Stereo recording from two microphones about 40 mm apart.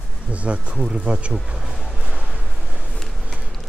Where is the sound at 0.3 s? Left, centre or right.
Right.